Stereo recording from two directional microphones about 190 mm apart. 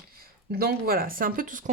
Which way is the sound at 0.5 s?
50° right (ahead or behind).